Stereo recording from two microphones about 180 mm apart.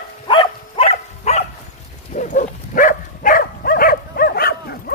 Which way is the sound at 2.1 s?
45° left (ahead or behind).